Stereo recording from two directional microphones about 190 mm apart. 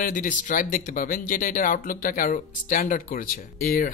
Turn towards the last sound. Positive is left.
turn(degrees=45)  # may be behind; listen again after turning